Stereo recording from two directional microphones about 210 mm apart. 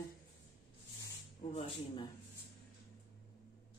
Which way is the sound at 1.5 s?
30° left (ahead or behind).